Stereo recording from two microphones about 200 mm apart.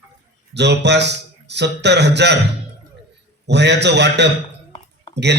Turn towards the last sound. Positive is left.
turn(degrees=-60)  # may be behind; listen again after turning